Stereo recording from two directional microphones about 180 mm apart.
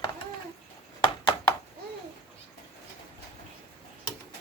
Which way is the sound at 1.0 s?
25° left (ahead or behind).